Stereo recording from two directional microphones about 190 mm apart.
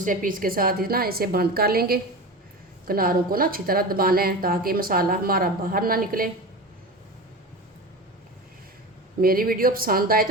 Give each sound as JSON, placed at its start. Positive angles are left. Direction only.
{"t": 0.0, "sound": "a woman's voice", "side_deg": -45}
{"t": 9.2, "sound": "a woman's voice", "side_deg": -50}